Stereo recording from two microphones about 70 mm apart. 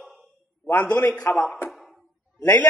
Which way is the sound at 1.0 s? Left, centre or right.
Left.